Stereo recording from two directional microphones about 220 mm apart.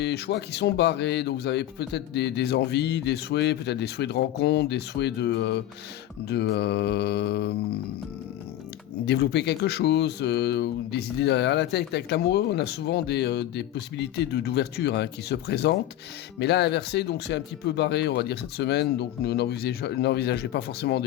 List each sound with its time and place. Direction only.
0.0 s speech: 50° left (ahead or behind)
9.0 s speech: 50° left (ahead or behind)